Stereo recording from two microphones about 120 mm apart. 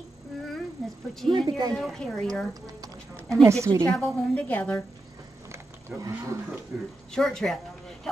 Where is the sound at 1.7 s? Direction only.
5° left (ahead or behind).